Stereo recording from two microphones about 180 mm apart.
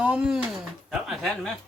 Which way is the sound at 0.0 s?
5° right (ahead or behind).